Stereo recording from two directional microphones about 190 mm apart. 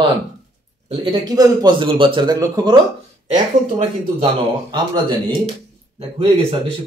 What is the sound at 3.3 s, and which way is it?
Speech, 30° right (ahead or behind).